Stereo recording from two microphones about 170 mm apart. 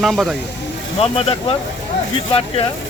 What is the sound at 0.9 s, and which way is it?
Speech, 35° left (ahead or behind).